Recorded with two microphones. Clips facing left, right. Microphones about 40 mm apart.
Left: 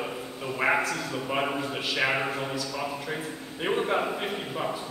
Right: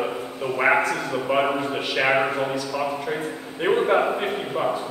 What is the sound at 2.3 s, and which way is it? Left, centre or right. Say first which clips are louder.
A man's voice: right 6 dB; centre.